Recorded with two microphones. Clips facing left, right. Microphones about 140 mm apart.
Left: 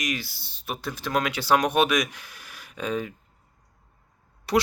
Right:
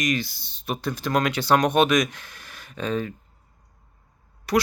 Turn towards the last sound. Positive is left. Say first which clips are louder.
# right 1 dB
turn(degrees=25)  # may be behind; listen again after turning